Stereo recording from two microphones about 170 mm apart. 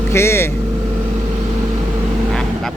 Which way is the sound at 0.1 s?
15° left (ahead or behind).